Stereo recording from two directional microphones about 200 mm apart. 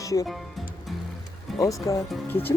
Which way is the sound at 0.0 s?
15° left (ahead or behind).